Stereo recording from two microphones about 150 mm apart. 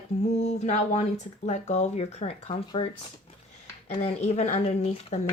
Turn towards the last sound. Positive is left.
turn(degrees=45)  # may be behind; listen again after turning